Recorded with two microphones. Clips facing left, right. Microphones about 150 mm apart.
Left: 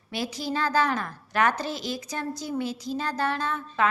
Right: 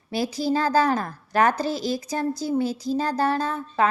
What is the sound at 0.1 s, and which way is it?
A woman's voice, 35° right (ahead or behind).